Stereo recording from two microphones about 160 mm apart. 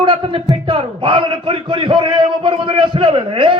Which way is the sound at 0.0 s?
30° right (ahead or behind).